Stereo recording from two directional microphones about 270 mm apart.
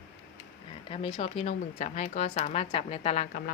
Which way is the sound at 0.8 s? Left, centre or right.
Left.